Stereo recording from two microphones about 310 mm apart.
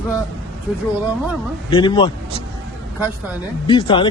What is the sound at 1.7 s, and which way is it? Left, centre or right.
Speech, centre.